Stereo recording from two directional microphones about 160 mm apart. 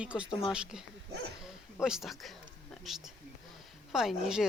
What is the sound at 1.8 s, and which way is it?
Speech, 5° right (ahead or behind).